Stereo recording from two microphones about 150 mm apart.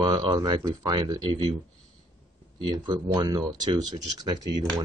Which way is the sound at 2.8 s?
30° right (ahead or behind).